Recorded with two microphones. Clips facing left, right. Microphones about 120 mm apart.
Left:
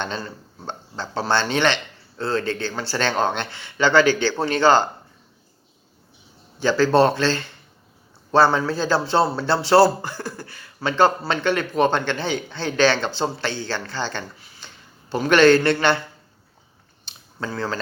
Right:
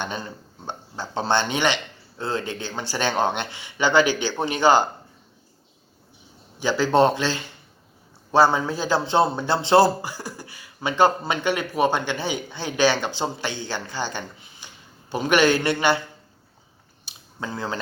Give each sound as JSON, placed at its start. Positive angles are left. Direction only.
{"t": 0.0, "sound": "a man's voice", "side_deg": -15}
{"t": 6.6, "sound": "a man's voice", "side_deg": -15}
{"t": 17.1, "sound": "a sound", "side_deg": -15}